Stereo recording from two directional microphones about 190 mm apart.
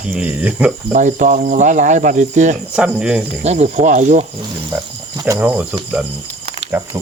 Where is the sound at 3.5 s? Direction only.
35° right (ahead or behind).